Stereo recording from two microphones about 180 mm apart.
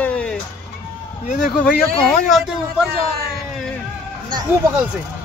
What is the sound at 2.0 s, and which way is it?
Speech, centre (ahead or behind).